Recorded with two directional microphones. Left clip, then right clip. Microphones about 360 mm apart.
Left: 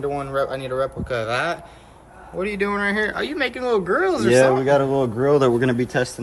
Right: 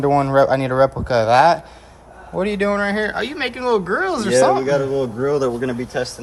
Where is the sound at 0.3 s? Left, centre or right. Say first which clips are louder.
Right 7 dB; centre.